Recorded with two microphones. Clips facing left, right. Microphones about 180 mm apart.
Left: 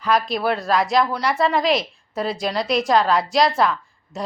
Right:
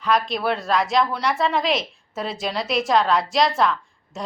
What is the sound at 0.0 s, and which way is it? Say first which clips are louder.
A woman's voice: left 1 dB; centre (ahead or behind).